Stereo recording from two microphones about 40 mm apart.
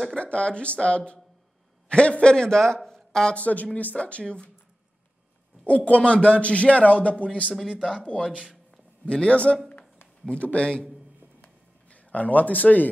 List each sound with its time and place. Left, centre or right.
0.2 s speech: left
3.3 s speech: left
3.9 s speech: left
5.7 s speech: left
9.0 s speech: left
11.4 s a sound: left